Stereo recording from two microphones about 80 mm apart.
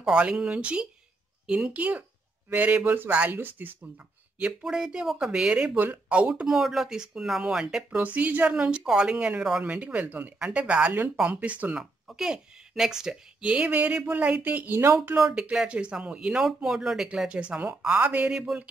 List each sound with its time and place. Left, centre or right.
0.2 s speech: centre
4.4 s speech: centre
5.8 s speech: centre
6.5 s speech: centre; by 15.0 s right
15.1 s speech: centre